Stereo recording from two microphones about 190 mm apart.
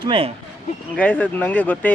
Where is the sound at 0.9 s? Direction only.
10° left (ahead or behind).